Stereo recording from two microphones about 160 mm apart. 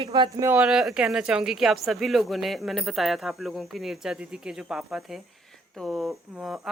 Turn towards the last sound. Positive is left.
turn(degrees=0)  # may be behind; listen again after turning